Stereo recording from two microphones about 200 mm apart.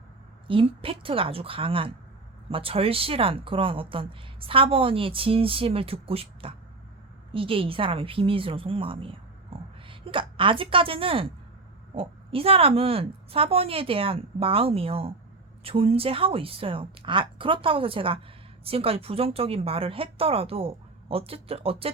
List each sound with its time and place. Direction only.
0.4 s a woman's voice: 25° right (ahead or behind)